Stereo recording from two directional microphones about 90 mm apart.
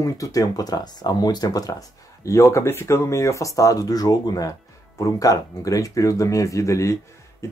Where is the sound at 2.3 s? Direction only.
35° left (ahead or behind).